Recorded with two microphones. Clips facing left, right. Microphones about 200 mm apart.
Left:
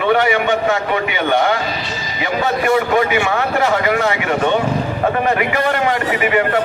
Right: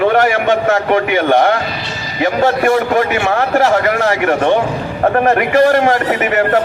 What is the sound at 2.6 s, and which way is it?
A man's voice, 50° right (ahead or behind).